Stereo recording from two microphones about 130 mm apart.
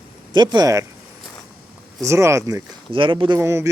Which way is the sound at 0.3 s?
35° right (ahead or behind).